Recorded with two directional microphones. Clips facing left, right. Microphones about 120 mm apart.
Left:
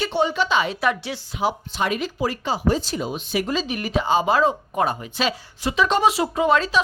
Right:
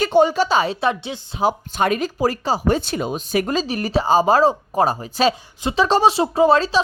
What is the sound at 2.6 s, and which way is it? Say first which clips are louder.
Speech: even; 60° right (ahead or behind).